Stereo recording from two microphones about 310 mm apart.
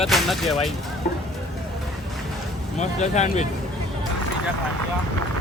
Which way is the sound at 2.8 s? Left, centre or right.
Left.